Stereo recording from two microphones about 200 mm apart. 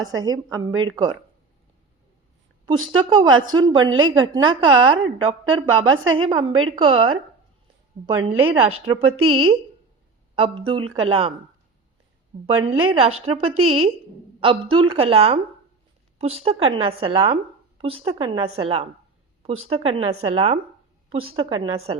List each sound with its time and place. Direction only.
0.0 s a woman's voice: 20° right (ahead or behind)
2.6 s a woman's voice: 25° right (ahead or behind)
3.8 s a woman's voice: 90° right
4.4 s a woman's voice: 25° right (ahead or behind)
5.7 s a woman's voice: 90° right
6.1 s a woman's voice: 25° right (ahead or behind)
8.0 s a woman's voice: 15° right (ahead or behind)
8.4 s a woman's voice: 30° right (ahead or behind)
12.5 s a woman's voice: 25° right (ahead or behind)